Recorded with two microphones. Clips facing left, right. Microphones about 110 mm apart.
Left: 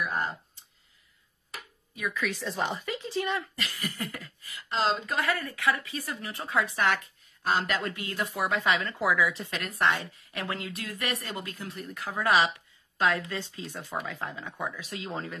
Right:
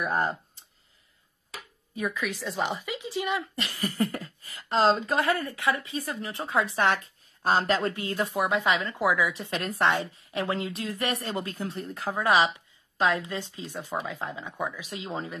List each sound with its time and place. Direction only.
0.0 s speech: 35° right (ahead or behind)
2.4 s speech: 5° right (ahead or behind)
3.5 s a woman's voice: 30° right (ahead or behind)
8.4 s a woman's voice: 20° right (ahead or behind)